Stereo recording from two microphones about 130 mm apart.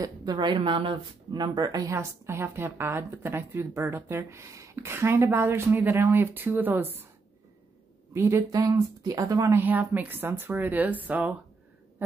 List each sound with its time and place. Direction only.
0.0 s speech: 30° right (ahead or behind); by 7.1 s 15° right (ahead or behind)
8.1 s speech: 20° right (ahead or behind)
9.6 s speech: 15° right (ahead or behind)